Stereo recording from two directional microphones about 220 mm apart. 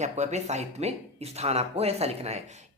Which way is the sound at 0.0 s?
30° right (ahead or behind).